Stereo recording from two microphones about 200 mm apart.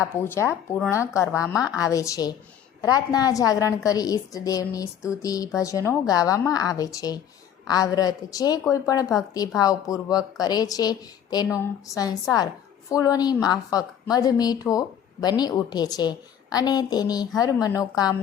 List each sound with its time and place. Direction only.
0.0 s a woman's voice: 10° left (ahead or behind)